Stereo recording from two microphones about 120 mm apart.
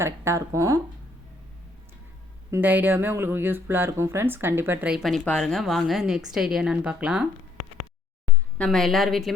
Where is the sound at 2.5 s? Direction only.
15° right (ahead or behind).